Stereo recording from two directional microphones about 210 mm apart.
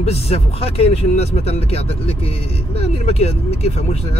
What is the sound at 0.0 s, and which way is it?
Speech, 30° left (ahead or behind).